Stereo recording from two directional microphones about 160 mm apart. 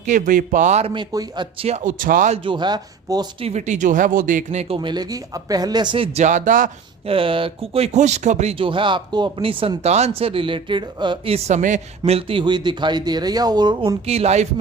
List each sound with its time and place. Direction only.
0.0 s speech: 55° right (ahead or behind)
1.1 s speech: 25° right (ahead or behind); by 2.3 s 60° right (ahead or behind)
2.3 s speech: 30° right (ahead or behind)
3.4 s speech: 45° right (ahead or behind)
4.7 s speech: 30° right (ahead or behind)
6.1 s speech: 50° right (ahead or behind)
7.0 s speech: 35° right (ahead or behind)